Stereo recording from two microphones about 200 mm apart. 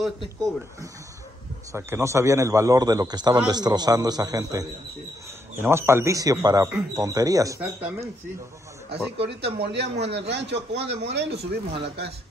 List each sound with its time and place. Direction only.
0.4 s a man's voice: 15° right (ahead or behind)
9.2 s speech: 55° right (ahead or behind)